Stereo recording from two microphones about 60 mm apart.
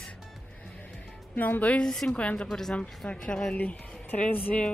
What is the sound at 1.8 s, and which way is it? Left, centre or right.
Speech, centre.